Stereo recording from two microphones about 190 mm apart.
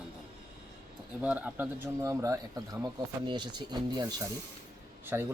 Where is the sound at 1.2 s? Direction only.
10° right (ahead or behind).